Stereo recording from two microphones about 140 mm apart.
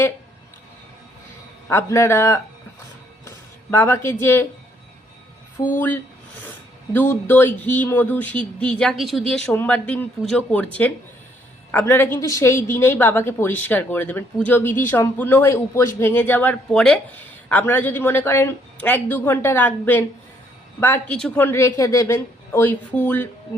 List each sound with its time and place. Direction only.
1.7 s a man's voice: 20° left (ahead or behind)
5.6 s a man's voice: 25° left (ahead or behind)
6.9 s a woman's voice: 15° left (ahead or behind)